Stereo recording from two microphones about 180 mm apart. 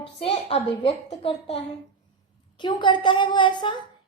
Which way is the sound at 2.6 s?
25° left (ahead or behind).